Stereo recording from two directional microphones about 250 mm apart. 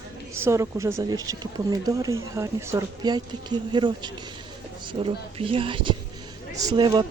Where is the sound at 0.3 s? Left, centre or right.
Centre.